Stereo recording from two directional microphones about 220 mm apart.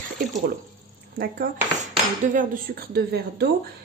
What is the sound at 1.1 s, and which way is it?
A woman's voice, 40° right (ahead or behind).